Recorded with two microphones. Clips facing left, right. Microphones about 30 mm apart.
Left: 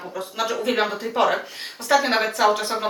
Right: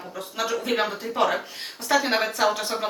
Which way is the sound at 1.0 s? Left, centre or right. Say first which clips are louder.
Left 3 dB; centre.